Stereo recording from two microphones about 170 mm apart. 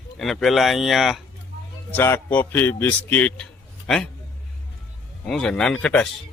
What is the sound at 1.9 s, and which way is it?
A man's voice, 15° left (ahead or behind).